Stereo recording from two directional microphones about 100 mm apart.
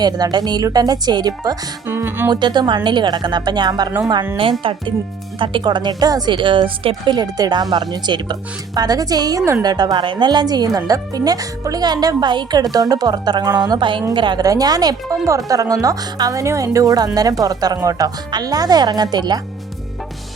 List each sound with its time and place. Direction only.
0.0 s speech: 45° right (ahead or behind)
1.9 s speech: 20° right (ahead or behind)
2.3 s speech: 45° right (ahead or behind)
4.6 s speech: 60° right (ahead or behind)
14.4 s speech: 40° right (ahead or behind)